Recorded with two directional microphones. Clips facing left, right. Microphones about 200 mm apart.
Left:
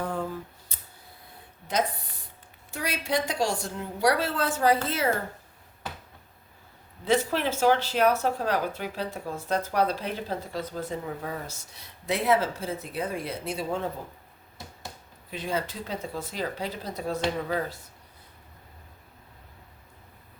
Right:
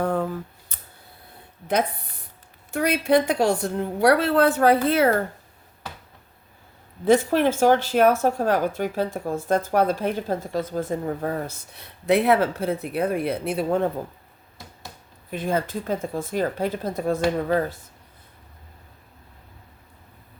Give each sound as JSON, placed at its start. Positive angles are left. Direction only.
{"t": 0.0, "sound": "a sound", "side_deg": -60}
{"t": 1.6, "sound": "a woman's voice", "side_deg": -60}
{"t": 7.0, "sound": "speech", "side_deg": -50}
{"t": 15.3, "sound": "speech", "side_deg": -50}